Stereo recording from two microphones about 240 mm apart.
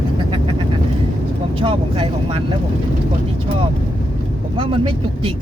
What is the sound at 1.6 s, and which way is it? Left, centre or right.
Speech, right.